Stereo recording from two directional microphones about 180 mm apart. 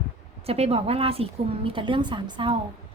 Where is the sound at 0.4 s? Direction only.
35° right (ahead or behind).